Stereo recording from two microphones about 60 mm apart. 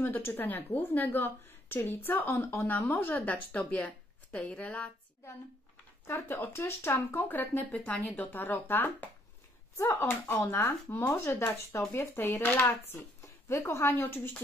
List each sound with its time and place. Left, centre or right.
0.0 s a woman's voice: left
6.2 s a woman's voice: left
9.8 s a woman's voice: left
13.2 s a sound: left
13.8 s a woman's voice: left